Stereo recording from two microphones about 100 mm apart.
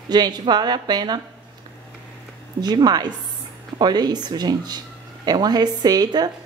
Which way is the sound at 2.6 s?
45° right (ahead or behind).